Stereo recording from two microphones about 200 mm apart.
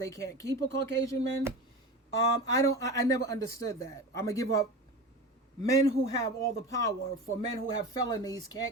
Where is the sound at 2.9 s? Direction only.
15° left (ahead or behind).